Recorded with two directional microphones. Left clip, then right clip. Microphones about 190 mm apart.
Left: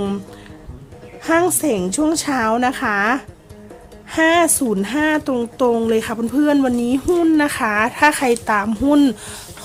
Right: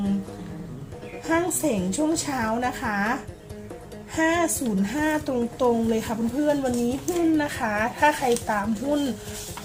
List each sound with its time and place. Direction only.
1.3 s speech: 45° left (ahead or behind)